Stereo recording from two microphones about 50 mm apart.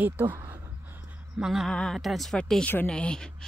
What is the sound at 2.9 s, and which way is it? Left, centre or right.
Speech, centre.